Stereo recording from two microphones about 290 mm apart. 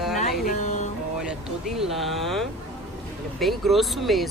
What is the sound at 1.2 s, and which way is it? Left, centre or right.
Speech, centre.